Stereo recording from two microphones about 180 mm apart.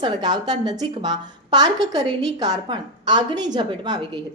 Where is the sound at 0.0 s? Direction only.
25° right (ahead or behind).